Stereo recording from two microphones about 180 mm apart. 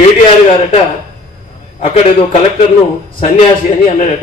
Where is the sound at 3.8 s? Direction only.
40° left (ahead or behind).